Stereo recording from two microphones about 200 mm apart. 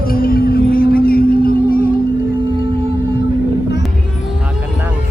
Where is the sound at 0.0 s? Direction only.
45° left (ahead or behind).